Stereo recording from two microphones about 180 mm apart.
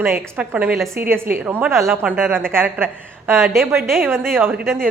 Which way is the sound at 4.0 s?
15° right (ahead or behind).